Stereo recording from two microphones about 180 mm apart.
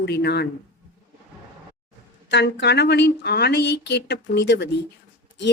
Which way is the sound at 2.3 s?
75° left (ahead or behind).